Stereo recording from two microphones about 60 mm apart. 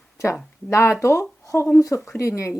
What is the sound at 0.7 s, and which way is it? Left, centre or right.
Speech, left.